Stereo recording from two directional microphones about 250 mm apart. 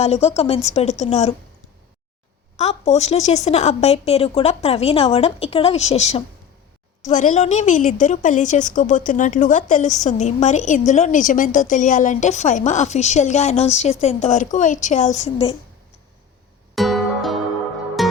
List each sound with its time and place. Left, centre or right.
0.0 s a woman's voice: left
2.6 s a woman's voice: left
16.7 s music: centre